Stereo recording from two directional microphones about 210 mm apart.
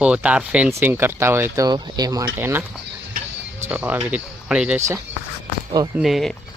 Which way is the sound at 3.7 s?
10° right (ahead or behind).